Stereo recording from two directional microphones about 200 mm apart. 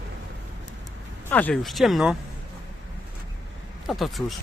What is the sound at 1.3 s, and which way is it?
Speech, 5° left (ahead or behind).